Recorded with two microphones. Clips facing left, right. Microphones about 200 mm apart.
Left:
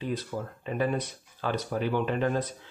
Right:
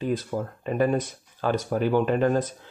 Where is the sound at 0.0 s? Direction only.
45° right (ahead or behind).